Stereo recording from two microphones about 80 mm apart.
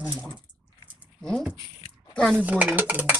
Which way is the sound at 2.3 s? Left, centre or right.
Centre.